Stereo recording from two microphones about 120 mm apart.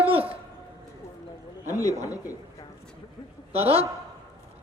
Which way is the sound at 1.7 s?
30° left (ahead or behind).